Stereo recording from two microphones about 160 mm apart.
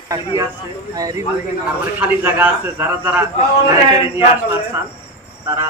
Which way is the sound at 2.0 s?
10° right (ahead or behind).